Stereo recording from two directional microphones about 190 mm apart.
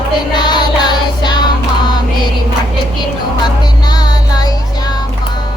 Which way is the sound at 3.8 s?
20° left (ahead or behind).